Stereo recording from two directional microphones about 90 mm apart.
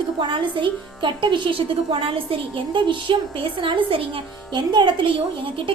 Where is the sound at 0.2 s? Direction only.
65° right (ahead or behind); by 4.6 s 90° right.